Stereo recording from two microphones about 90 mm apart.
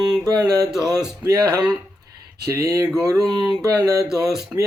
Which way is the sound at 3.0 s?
40° right (ahead or behind).